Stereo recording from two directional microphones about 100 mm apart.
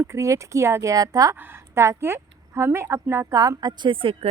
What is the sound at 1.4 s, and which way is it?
A woman's voice, 25° right (ahead or behind).